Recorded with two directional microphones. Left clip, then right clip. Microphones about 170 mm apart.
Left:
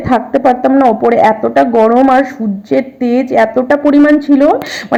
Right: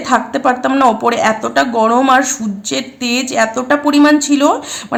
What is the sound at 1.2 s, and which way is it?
A woman's voice, 15° left (ahead or behind).